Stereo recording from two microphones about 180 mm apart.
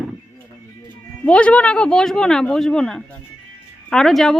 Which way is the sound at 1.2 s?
5° left (ahead or behind).